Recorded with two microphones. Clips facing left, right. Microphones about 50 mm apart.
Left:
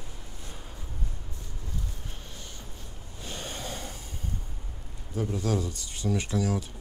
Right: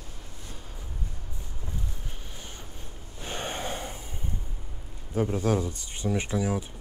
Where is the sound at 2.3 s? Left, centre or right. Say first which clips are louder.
Right 1 dB; right.